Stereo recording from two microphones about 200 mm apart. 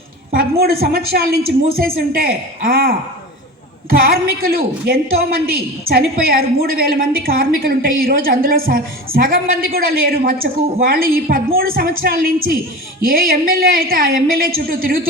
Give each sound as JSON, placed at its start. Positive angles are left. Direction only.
{"t": 0.3, "sound": "a woman's voice", "side_deg": -50}